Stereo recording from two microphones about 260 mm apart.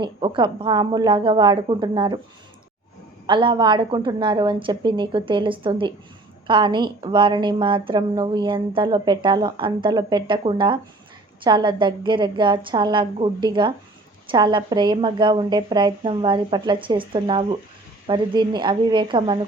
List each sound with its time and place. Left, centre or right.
0.0 s a woman's voice: centre
3.2 s a woman's voice: centre